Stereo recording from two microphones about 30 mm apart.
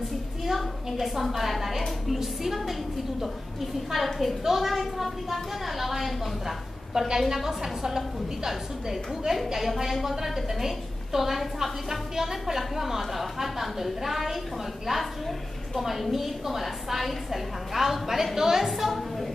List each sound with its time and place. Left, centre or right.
0.5 s a woman's voice: centre
3.9 s a woman's voice: centre
9.3 s a woman's voice: centre
18.7 s a woman's voice: centre